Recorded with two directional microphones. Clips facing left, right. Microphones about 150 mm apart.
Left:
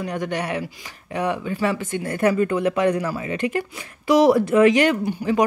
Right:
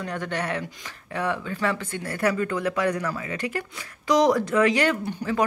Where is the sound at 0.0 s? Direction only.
15° left (ahead or behind).